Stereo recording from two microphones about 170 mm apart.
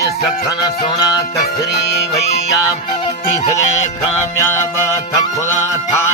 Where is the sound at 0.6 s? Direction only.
25° left (ahead or behind).